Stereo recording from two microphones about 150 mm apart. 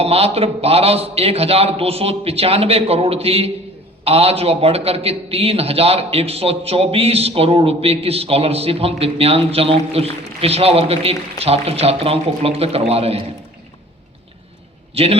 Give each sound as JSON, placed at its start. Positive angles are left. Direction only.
{"t": 0.0, "sound": "a man's voice", "side_deg": -40}
{"t": 14.9, "sound": "a man's voice", "side_deg": -40}